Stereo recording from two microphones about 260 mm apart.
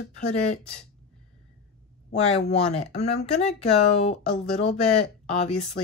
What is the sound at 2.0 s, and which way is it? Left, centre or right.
Speech, left.